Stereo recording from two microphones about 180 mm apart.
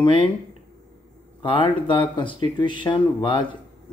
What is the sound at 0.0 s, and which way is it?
Speech, 30° left (ahead or behind).